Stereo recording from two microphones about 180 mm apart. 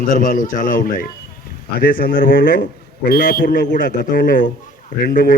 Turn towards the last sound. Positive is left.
turn(degrees=50)  # may be behind; listen again after turning